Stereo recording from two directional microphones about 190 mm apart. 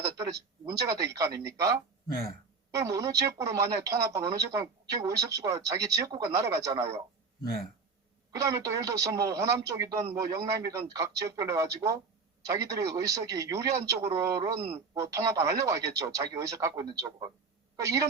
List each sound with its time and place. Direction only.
0.6 s speech: 15° right (ahead or behind)
2.7 s speech: 15° right (ahead or behind)
8.4 s speech: 15° right (ahead or behind)